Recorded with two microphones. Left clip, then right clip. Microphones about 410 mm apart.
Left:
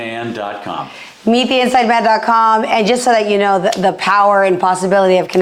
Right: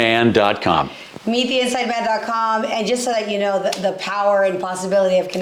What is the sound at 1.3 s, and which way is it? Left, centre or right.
A woman's voice, left.